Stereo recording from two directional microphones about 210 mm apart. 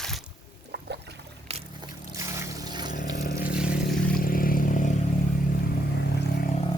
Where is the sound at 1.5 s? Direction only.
30° right (ahead or behind).